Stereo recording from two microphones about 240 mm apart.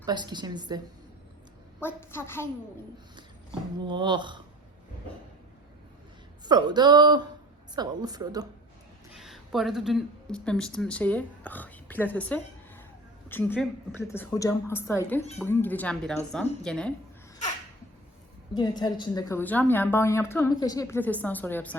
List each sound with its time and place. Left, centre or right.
0.0 s speech: centre
1.8 s a woman's voice: centre
3.8 s speech: centre
6.4 s speech: centre
9.1 s a woman's voice: centre
18.5 s a woman's voice: centre